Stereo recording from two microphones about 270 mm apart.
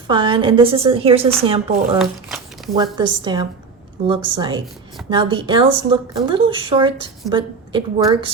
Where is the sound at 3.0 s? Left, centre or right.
Centre.